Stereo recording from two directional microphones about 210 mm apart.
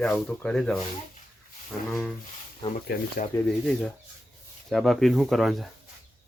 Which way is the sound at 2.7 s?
40° left (ahead or behind).